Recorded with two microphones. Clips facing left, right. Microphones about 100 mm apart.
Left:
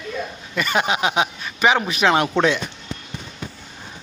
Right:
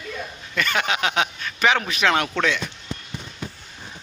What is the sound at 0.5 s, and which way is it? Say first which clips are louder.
Speech: left 3 dB; 20° left (ahead or behind).